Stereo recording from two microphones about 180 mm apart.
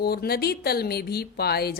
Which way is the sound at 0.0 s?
60° left (ahead or behind).